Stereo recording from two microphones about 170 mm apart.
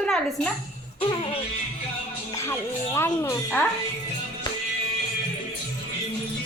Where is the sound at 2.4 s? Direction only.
15° left (ahead or behind).